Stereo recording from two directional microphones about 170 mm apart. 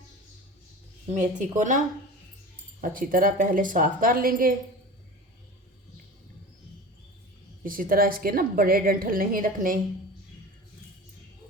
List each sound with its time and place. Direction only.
1.1 s a woman's voice: 45° right (ahead or behind)
2.8 s a woman's voice: 55° right (ahead or behind)
7.6 s a woman's voice: 55° right (ahead or behind)